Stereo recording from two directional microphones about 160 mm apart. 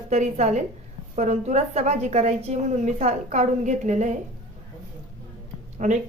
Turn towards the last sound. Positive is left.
turn(degrees=-50)  # may be behind; listen again after turning